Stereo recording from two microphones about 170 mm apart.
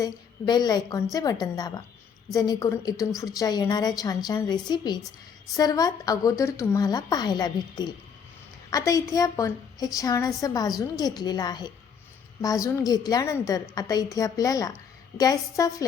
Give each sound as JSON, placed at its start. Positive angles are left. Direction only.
{"t": 0.0, "sound": "a woman's voice", "side_deg": 25}